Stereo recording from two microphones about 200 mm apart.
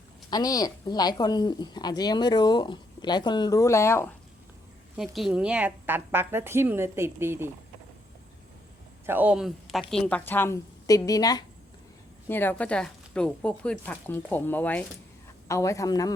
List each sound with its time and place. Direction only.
0.3 s a woman's voice: 20° left (ahead or behind)
4.9 s a woman's voice: centre (ahead or behind)
9.0 s speech: 10° right (ahead or behind); by 16.1 s 20° left (ahead or behind)